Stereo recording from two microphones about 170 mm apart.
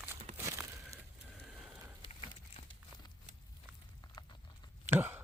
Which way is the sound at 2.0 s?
35° left (ahead or behind).